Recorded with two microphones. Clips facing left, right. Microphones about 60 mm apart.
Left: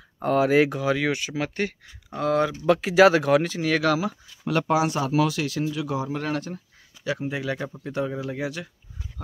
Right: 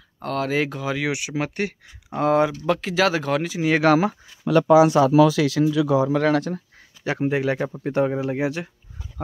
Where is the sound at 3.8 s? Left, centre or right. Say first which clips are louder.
Right 6 dB; right.